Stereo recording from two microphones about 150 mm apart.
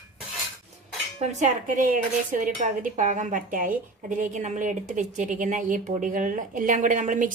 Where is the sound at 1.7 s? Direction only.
60° right (ahead or behind).